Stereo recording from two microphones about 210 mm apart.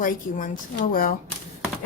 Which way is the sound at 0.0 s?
40° left (ahead or behind).